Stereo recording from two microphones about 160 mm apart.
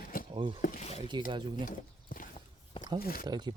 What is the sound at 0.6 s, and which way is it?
Speech, 55° left (ahead or behind).